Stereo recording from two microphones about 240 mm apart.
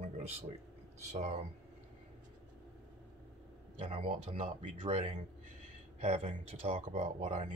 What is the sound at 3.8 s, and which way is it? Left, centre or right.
Speech, right.